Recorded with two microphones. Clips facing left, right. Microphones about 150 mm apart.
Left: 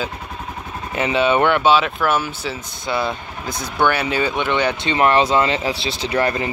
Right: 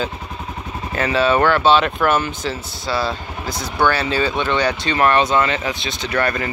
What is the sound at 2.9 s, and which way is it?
Speech, 20° left (ahead or behind).